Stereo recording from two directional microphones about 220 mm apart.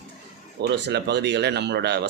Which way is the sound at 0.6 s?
50° right (ahead or behind).